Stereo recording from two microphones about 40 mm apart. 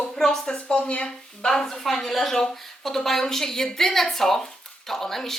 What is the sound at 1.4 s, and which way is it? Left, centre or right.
A woman's voice, centre.